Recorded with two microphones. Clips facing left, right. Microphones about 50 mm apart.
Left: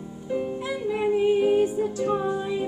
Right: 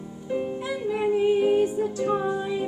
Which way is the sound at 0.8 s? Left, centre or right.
Centre.